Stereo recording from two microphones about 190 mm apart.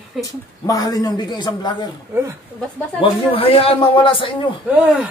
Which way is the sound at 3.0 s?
30° left (ahead or behind).